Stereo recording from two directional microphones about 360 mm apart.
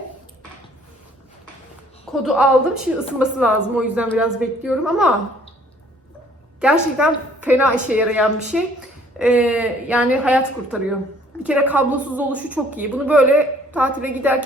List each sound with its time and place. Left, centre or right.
2.2 s a woman's voice: centre
6.6 s a woman's voice: centre